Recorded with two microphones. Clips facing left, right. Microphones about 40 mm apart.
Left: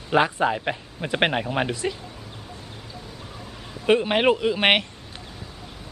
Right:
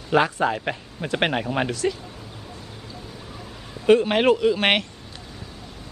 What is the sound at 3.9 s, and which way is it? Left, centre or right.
Speech, centre.